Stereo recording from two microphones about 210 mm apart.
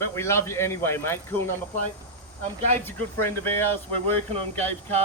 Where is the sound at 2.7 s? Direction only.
10° left (ahead or behind).